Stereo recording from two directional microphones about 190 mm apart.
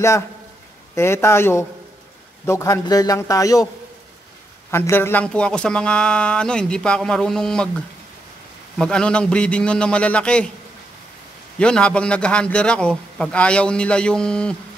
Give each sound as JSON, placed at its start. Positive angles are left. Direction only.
{"t": 0.9, "sound": "a man's voice", "side_deg": 15}
{"t": 4.6, "sound": "a man's voice", "side_deg": 10}
{"t": 8.7, "sound": "a man's voice", "side_deg": 5}
{"t": 11.5, "sound": "a man's voice", "side_deg": 5}